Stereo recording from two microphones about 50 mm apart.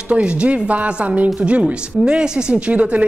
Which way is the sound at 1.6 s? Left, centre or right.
Centre.